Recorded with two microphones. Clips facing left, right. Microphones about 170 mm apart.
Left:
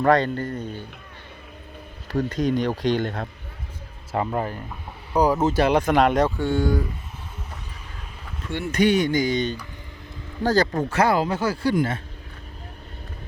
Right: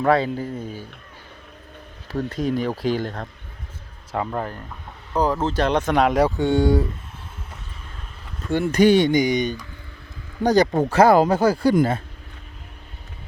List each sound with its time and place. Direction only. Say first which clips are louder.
0.0 s speech: even; 5° right (ahead or behind)
2.0 s speech: left 1 dB; centre (ahead or behind)
6.2 s speech: right 4 dB; 20° right (ahead or behind)
8.4 s speech: right 5 dB; 40° right (ahead or behind)
9.1 s speech: right 3 dB; 15° right (ahead or behind)
10.8 s speech: right 6 dB; 35° right (ahead or behind)